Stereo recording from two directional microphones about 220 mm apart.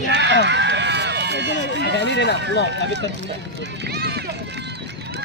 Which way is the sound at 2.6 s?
55° right (ahead or behind).